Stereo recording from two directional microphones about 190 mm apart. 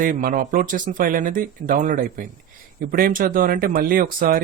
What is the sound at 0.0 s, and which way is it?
Speech, 50° right (ahead or behind).